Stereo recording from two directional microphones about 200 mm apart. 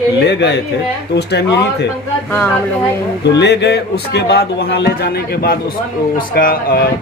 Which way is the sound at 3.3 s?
55° left (ahead or behind).